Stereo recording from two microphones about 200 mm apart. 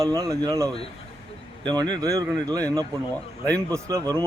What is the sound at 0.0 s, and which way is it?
A man's voice, 15° right (ahead or behind).